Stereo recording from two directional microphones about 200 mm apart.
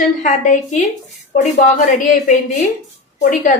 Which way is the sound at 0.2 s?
40° left (ahead or behind).